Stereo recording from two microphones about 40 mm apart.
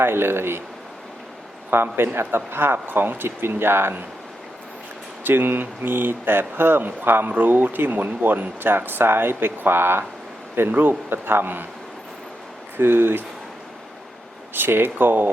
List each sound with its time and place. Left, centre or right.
0.0 s speech: right
1.7 s a man's voice: right
2.7 s speech: right
3.2 s speech: right
5.2 s speech: right
7.3 s speech: right
10.5 s speech: right
12.7 s a man's voice: right
14.5 s speech: right